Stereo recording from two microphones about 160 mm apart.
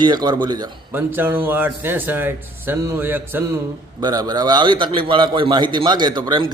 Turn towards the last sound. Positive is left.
turn(degrees=-30)  # may be behind; listen again after turning